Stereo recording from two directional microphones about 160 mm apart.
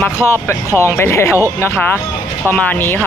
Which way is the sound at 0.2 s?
15° left (ahead or behind).